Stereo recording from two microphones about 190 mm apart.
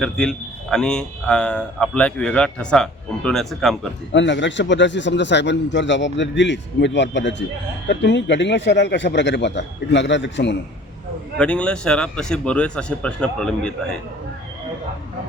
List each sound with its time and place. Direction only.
0.0 s a man's voice: 5° left (ahead or behind)
4.1 s a man's voice: 70° left (ahead or behind)
11.3 s a man's voice: 5° left (ahead or behind)